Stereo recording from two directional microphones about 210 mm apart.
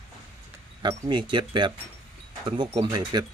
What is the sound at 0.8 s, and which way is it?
Speech, 20° right (ahead or behind).